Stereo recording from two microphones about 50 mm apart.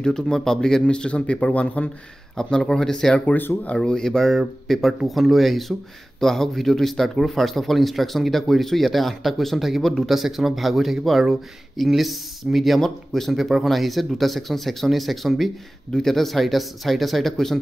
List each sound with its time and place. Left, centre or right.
0.0 s speech: centre; by 1.9 s left
2.3 s speech: centre
3.9 s speech: centre